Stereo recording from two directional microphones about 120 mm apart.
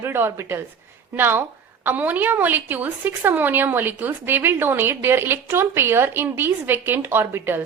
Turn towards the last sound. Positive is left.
turn(degrees=-20)  # may be behind; listen again after turning